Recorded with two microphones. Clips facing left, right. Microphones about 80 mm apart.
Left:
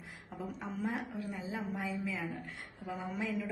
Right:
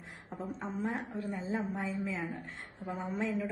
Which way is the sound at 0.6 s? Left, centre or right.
Right.